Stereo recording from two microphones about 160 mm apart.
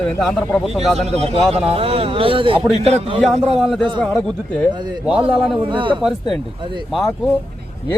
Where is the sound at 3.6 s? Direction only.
Centre (ahead or behind).